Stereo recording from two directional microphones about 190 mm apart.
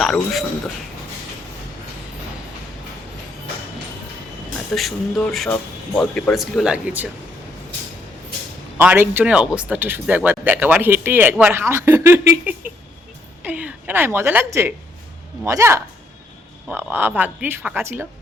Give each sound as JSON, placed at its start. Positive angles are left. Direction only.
{"t": 0.0, "sound": "speech", "side_deg": 0}
{"t": 4.7, "sound": "speech", "side_deg": 0}
{"t": 8.8, "sound": "a woman's voice", "side_deg": -10}